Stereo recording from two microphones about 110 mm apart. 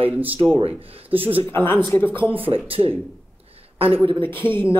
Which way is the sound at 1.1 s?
60° right (ahead or behind).